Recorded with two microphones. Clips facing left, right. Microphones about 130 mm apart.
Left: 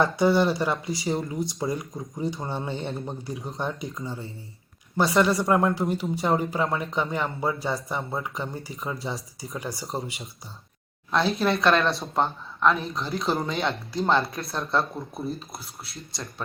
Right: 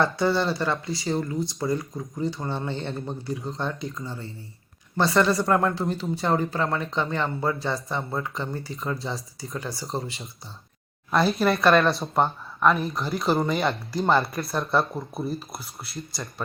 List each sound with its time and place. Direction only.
0.0 s speech: 15° left (ahead or behind)
11.1 s speech: 5° right (ahead or behind)